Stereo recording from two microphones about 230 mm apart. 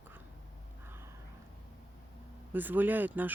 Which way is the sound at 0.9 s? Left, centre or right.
Centre.